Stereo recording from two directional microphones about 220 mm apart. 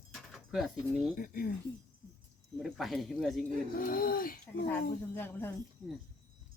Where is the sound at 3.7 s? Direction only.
40° left (ahead or behind).